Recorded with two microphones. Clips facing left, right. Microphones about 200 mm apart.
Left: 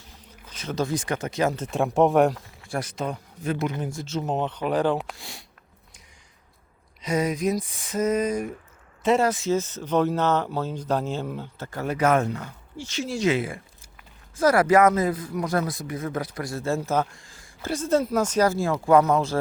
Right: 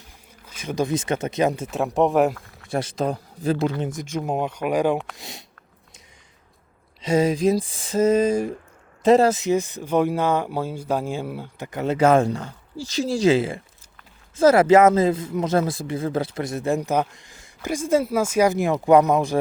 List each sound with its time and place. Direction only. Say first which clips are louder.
0.4 s speech: right 3 dB; 10° right (ahead or behind)
2.6 s speech: right 5 dB; 25° right (ahead or behind)
3.8 s speech: right 2 dB; 20° right (ahead or behind)
7.0 s speech: right 5 dB; 25° right (ahead or behind)
9.3 s speech: right 3 dB; 15° right (ahead or behind)